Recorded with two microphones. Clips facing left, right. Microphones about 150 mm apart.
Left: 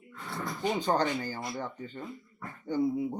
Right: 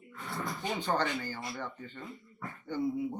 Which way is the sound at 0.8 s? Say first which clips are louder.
Left 3 dB; 40° left (ahead or behind).